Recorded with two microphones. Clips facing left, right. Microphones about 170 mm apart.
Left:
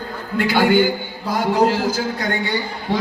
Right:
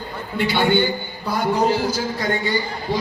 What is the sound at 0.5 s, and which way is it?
Speech, 90° left.